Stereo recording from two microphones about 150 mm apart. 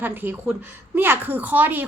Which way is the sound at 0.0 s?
15° right (ahead or behind).